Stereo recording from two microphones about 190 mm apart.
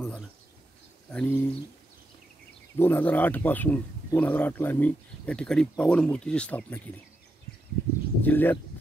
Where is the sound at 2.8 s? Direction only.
10° left (ahead or behind).